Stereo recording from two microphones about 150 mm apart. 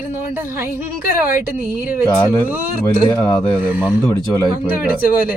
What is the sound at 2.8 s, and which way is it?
Speech, 20° left (ahead or behind).